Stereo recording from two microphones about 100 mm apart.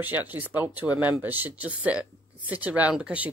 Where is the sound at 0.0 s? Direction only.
20° right (ahead or behind).